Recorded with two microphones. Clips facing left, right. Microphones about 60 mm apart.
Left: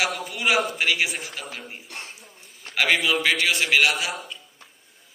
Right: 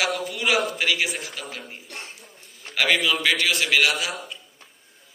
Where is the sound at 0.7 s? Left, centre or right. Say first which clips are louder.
Even; left.